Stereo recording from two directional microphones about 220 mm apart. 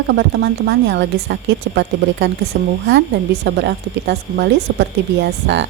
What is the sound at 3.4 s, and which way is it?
Speech, 50° right (ahead or behind).